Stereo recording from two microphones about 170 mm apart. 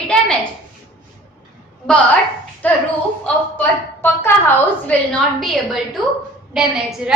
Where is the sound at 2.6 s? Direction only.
10° left (ahead or behind).